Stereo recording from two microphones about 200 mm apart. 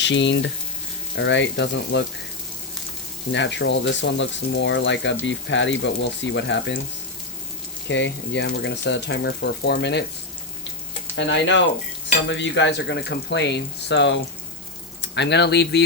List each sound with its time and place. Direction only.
0.0 s speech: 65° left (ahead or behind)
3.3 s speech: 65° left (ahead or behind)
7.9 s speech: 65° left (ahead or behind)
11.1 s speech: 65° left (ahead or behind)